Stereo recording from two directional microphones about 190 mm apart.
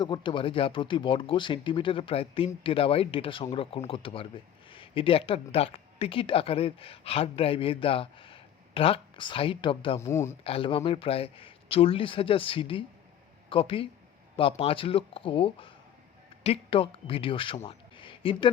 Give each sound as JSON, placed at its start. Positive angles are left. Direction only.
{"t": 0.0, "sound": "speech", "side_deg": 25}
{"t": 10.0, "sound": "speech", "side_deg": 15}
{"t": 10.4, "sound": "speech", "side_deg": 30}
{"t": 17.7, "sound": "a sound", "side_deg": 25}